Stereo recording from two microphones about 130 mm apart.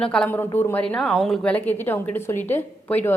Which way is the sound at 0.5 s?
15° left (ahead or behind).